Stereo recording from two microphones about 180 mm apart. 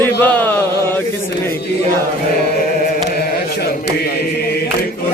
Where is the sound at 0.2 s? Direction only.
10° left (ahead or behind).